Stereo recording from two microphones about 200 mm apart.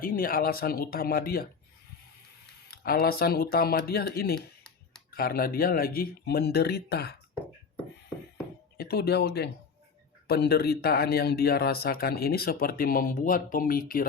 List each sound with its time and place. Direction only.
0.0 s speech: 45° left (ahead or behind)
2.6 s speech: 50° left (ahead or behind)
4.4 s a sound: 5° left (ahead or behind)
5.1 s speech: 50° left (ahead or behind)
8.8 s speech: 50° left (ahead or behind)